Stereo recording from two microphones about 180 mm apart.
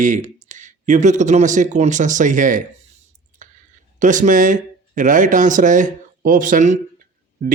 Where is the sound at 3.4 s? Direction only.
45° right (ahead or behind).